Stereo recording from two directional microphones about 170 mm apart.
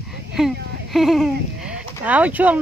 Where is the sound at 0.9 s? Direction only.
Centre (ahead or behind).